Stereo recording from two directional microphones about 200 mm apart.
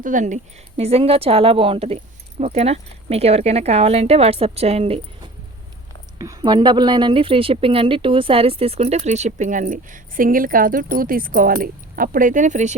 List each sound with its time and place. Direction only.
0.0 s speech: 40° right (ahead or behind)
6.1 s speech: 15° right (ahead or behind); by 12.7 s 40° right (ahead or behind)